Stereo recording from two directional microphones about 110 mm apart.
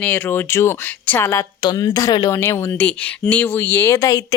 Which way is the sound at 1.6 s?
35° left (ahead or behind).